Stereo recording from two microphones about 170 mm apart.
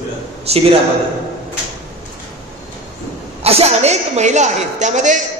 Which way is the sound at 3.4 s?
35° right (ahead or behind).